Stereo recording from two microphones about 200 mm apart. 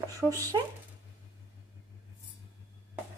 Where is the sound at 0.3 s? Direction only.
15° right (ahead or behind).